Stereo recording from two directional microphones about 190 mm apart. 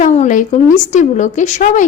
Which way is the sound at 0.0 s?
40° left (ahead or behind).